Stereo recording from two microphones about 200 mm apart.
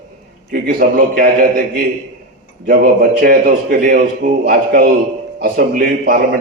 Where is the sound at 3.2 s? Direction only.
50° right (ahead or behind).